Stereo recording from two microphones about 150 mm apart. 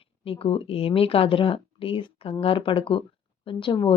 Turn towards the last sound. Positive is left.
turn(degrees=35)  # may be behind; listen again after turning